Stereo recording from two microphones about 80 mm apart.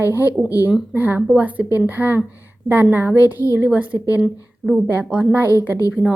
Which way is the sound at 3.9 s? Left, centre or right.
Left.